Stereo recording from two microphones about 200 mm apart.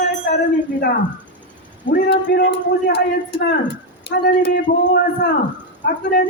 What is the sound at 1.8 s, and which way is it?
Speech, 50° left (ahead or behind).